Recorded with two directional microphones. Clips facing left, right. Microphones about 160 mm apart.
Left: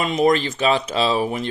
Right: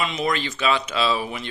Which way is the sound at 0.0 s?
45° left (ahead or behind).